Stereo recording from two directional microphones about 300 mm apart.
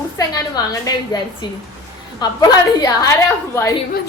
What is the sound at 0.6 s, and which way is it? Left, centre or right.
Speech, centre.